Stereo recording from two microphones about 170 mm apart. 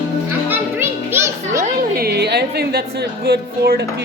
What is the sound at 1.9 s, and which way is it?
Speech, 70° right (ahead or behind).